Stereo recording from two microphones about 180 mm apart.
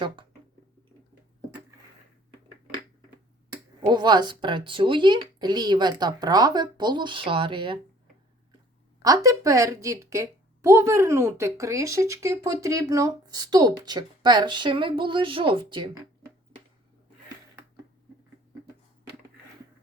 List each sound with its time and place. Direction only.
3.8 s a woman's voice: 25° right (ahead or behind)
9.0 s a woman's voice: 20° right (ahead or behind)